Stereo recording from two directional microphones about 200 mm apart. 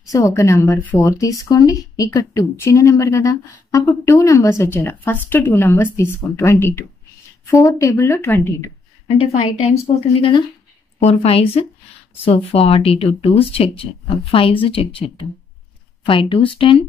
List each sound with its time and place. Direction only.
0.0 s a woman's voice: 15° left (ahead or behind)
9.1 s a woman's voice: 30° left (ahead or behind)